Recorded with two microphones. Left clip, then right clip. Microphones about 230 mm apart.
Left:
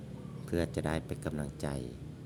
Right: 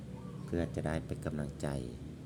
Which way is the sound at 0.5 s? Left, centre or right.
Centre.